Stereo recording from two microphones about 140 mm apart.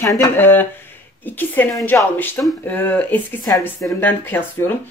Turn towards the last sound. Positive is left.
turn(degrees=15)  # may be behind; listen again after turning